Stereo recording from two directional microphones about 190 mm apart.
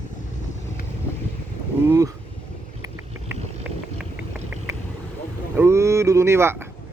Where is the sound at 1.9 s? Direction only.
15° right (ahead or behind).